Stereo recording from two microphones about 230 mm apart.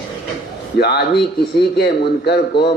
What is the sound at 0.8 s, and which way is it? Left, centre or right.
A man's voice, left.